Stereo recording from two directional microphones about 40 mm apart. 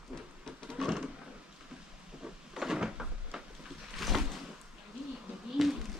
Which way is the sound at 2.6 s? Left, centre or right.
Centre.